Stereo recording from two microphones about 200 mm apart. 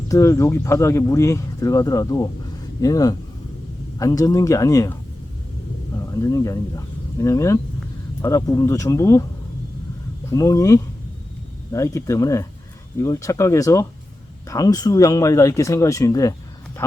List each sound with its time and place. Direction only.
0.1 s speech: 15° left (ahead or behind)
6.1 s speech: 15° left (ahead or behind)
10.2 s speech: 15° left (ahead or behind)